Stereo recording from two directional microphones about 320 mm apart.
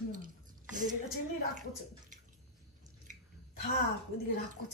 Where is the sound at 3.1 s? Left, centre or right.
Right.